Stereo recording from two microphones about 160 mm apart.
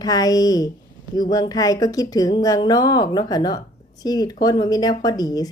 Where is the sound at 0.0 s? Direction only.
25° left (ahead or behind).